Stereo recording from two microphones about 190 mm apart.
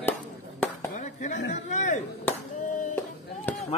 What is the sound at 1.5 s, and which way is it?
Speech, 40° left (ahead or behind).